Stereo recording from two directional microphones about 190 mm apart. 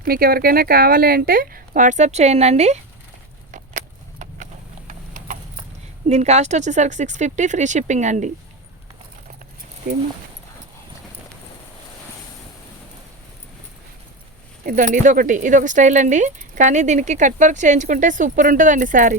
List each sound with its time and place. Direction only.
0.0 s speech: 50° right (ahead or behind); by 2.8 s 35° right (ahead or behind)
3.5 s keys jangling: 40° right (ahead or behind)
4.9 s clip-clop: 40° right (ahead or behind)
6.1 s speech: 35° right (ahead or behind)
14.6 s speech: 45° right (ahead or behind)